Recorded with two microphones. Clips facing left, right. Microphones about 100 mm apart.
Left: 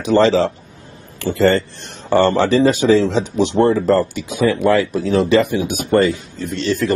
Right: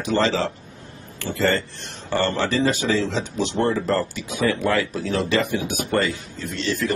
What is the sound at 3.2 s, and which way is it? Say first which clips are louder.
Speech: left 8 dB; 20° left (ahead or behind).